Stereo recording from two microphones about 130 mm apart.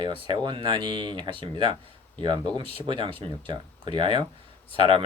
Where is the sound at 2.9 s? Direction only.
40° right (ahead or behind).